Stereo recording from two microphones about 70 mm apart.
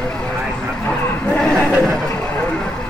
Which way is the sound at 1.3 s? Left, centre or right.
Centre.